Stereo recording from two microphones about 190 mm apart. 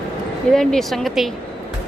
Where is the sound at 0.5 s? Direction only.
Centre (ahead or behind).